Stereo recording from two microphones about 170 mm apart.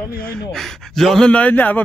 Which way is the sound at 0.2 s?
Centre (ahead or behind).